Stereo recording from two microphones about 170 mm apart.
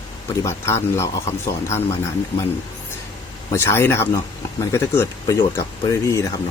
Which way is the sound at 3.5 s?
15° left (ahead or behind).